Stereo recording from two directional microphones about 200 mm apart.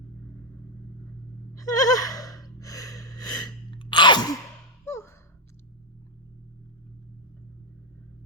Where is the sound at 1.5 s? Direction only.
15° left (ahead or behind).